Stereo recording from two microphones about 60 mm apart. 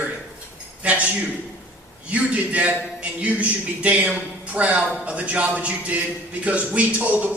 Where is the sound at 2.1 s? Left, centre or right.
Right.